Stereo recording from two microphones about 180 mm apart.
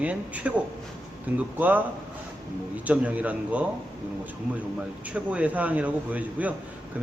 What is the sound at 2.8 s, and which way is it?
Speech, 10° right (ahead or behind).